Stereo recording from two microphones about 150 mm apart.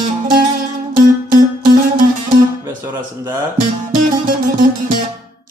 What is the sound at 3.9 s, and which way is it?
Music, 60° right (ahead or behind).